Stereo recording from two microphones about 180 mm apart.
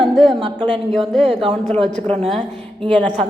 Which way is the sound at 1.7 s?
35° right (ahead or behind).